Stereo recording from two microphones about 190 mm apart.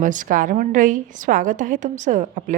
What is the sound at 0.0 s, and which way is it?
A woman's voice, 45° right (ahead or behind).